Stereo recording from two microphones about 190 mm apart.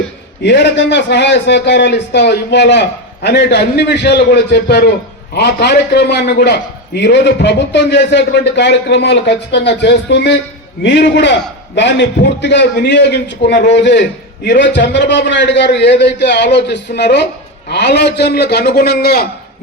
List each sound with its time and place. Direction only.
0.4 s a man's voice: 65° left (ahead or behind)